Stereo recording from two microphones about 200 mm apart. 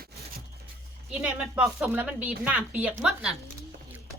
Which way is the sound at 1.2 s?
5° right (ahead or behind).